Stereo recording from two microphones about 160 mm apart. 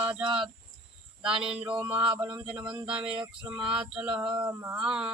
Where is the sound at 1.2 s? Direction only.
5° right (ahead or behind).